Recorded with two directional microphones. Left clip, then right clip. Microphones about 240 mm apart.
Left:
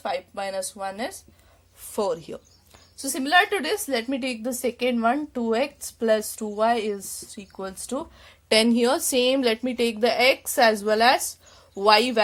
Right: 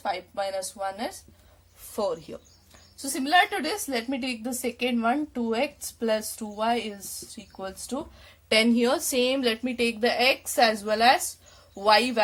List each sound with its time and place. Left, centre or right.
0.0 s a woman's voice: left